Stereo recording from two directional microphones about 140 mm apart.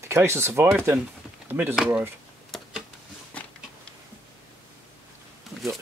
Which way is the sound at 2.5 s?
Centre (ahead or behind).